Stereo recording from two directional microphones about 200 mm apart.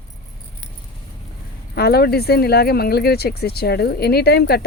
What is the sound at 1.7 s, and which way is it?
Speech, 50° left (ahead or behind).